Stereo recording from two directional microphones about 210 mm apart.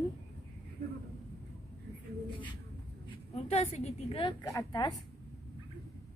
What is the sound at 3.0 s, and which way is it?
A woman's voice, 30° left (ahead or behind).